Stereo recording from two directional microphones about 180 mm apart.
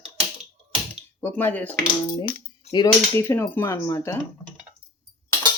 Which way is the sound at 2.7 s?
15° left (ahead or behind).